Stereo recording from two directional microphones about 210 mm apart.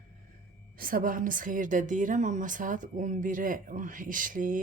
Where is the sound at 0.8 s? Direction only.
40° right (ahead or behind).